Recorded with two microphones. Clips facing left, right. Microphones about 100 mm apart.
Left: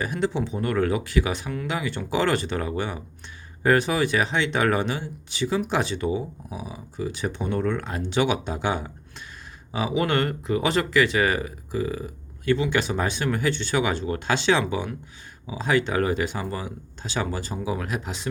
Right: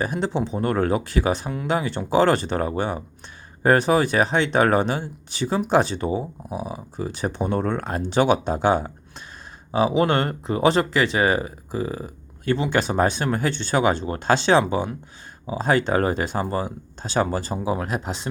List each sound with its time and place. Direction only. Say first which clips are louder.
0.0 s speech: right 2 dB; 30° right (ahead or behind)